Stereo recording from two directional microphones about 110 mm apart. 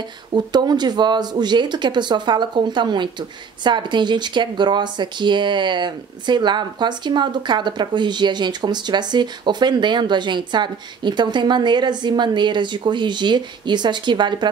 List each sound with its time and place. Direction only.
0.3 s speech: 40° right (ahead or behind)